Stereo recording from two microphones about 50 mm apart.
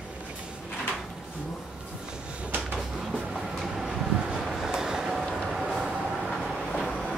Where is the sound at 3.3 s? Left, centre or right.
Centre.